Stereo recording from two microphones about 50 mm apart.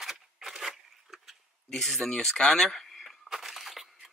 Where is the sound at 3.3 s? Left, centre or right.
Centre.